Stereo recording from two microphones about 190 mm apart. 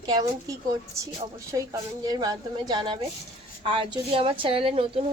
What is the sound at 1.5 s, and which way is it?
Speech, 20° right (ahead or behind).